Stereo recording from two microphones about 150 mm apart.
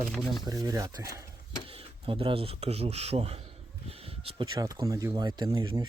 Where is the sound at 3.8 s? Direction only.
40° right (ahead or behind).